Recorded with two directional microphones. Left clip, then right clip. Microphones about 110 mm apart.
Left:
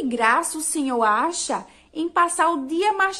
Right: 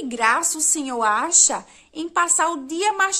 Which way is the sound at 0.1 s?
30° right (ahead or behind).